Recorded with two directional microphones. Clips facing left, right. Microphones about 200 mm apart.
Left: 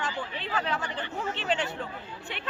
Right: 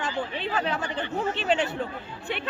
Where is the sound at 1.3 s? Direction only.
10° right (ahead or behind).